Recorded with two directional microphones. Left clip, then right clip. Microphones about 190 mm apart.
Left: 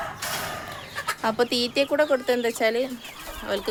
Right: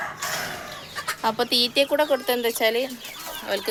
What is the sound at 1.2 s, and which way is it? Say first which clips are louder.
Speech: right 2 dB; 25° left (ahead or behind).